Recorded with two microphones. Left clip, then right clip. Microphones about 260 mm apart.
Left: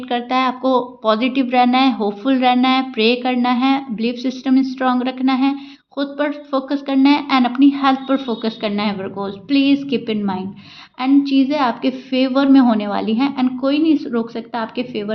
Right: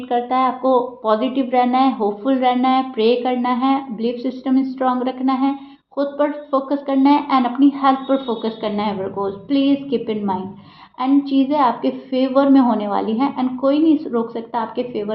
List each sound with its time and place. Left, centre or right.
0.1 s speech: left